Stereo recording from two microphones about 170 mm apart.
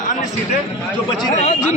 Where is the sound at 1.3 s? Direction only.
40° left (ahead or behind).